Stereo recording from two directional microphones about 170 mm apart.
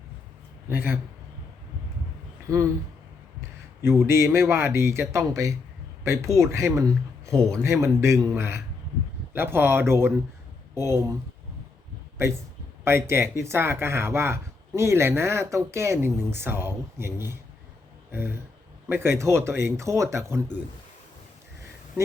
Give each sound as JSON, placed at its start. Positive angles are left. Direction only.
{"t": 0.7, "sound": "speech", "side_deg": -10}
{"t": 2.5, "sound": "speech", "side_deg": -20}
{"t": 3.8, "sound": "a man's voice", "side_deg": -15}